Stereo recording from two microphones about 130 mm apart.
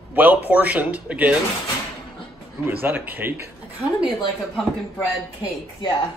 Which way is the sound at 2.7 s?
15° right (ahead or behind).